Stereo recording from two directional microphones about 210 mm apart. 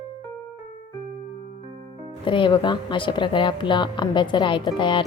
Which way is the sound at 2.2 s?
25° left (ahead or behind).